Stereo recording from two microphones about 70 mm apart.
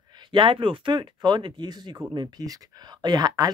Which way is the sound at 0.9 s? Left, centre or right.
Right.